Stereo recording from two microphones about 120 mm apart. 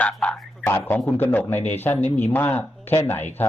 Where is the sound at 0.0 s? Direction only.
10° left (ahead or behind).